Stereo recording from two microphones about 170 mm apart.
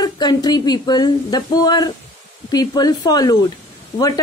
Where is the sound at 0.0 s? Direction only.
25° left (ahead or behind).